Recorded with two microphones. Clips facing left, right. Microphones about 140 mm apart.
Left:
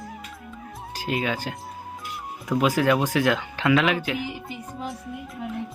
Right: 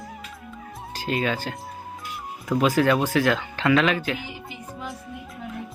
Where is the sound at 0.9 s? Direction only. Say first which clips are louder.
Right 1 dB; 15° left (ahead or behind).